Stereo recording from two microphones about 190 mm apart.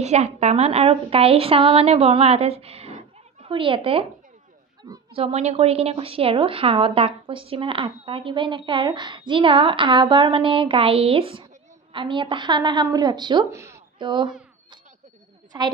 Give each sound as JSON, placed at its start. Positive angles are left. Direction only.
{"t": 0.0, "sound": "a woman's voice", "side_deg": -35}
{"t": 5.1, "sound": "a woman's voice", "side_deg": -30}